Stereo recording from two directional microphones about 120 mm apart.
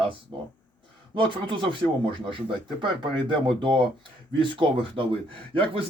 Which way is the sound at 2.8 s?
45° right (ahead or behind).